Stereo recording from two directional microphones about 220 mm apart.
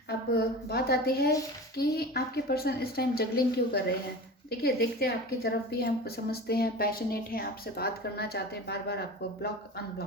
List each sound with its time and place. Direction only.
0.1 s a woman's voice: 45° left (ahead or behind)